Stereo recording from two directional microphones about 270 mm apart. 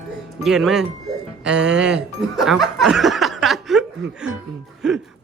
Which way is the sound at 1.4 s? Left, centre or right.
Centre.